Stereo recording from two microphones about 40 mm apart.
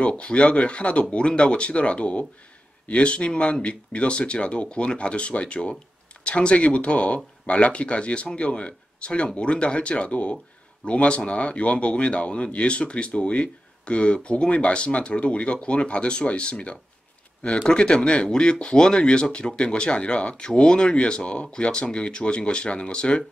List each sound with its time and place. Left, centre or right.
0.1 s speech: left